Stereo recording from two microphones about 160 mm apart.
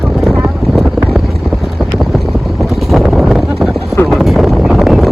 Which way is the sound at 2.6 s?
Centre (ahead or behind).